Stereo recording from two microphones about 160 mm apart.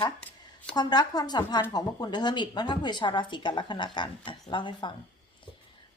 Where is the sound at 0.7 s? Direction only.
25° left (ahead or behind).